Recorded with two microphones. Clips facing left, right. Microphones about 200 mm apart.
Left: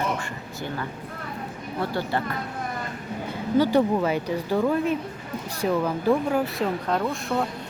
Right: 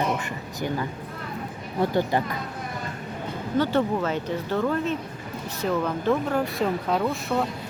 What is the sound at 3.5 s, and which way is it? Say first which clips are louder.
Speech: left 3 dB; 10° left (ahead or behind).